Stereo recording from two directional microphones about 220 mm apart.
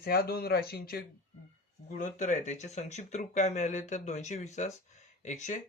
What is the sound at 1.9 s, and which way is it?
Speech, 35° left (ahead or behind).